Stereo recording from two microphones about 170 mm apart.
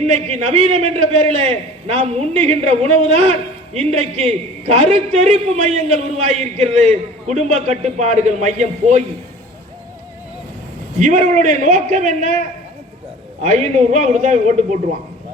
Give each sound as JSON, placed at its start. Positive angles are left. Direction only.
{"t": 0.1, "sound": "a man's voice", "side_deg": -40}
{"t": 11.0, "sound": "a man's voice", "side_deg": -45}
{"t": 13.4, "sound": "a man's voice", "side_deg": -45}